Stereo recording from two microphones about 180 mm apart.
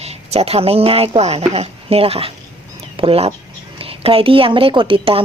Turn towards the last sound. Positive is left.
turn(degrees=-30)  # may be behind; listen again after turning